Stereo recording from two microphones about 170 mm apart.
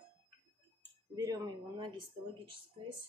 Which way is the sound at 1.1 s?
20° right (ahead or behind).